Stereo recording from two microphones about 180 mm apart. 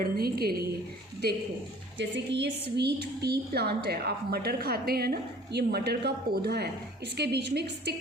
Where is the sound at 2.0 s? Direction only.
80° right.